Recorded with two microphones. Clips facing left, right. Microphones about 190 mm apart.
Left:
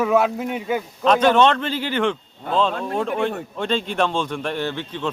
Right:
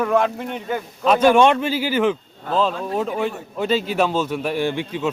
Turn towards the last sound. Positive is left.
turn(degrees=-10)  # may be behind; listen again after turning